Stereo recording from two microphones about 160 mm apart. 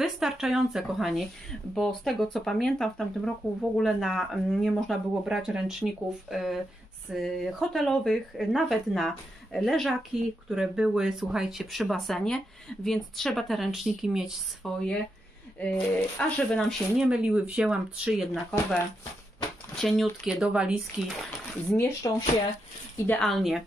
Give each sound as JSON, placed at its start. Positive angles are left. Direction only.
{"t": 0.0, "sound": "speech", "side_deg": 0}
{"t": 19.7, "sound": "speech", "side_deg": 0}
{"t": 21.7, "sound": "speech", "side_deg": 15}
{"t": 23.2, "sound": "speech", "side_deg": 0}